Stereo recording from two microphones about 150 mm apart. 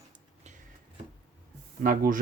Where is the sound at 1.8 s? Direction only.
65° right (ahead or behind).